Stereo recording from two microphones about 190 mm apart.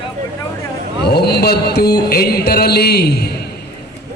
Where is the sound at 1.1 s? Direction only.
55° left (ahead or behind).